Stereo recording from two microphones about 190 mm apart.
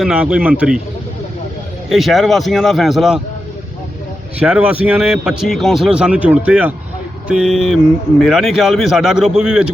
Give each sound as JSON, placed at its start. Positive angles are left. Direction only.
{"t": 0.0, "sound": "speech", "side_deg": -5}
{"t": 1.9, "sound": "speech", "side_deg": 0}
{"t": 4.4, "sound": "speech", "side_deg": -5}